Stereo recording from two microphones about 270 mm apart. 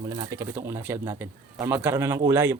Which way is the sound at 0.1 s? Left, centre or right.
Centre.